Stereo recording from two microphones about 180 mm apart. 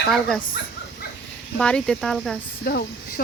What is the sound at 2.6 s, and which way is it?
Speech, 60° left (ahead or behind).